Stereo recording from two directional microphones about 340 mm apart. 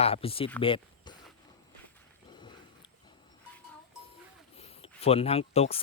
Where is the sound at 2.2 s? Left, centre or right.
Centre.